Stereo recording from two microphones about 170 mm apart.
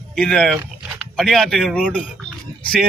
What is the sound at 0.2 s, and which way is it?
Speech, 5° left (ahead or behind).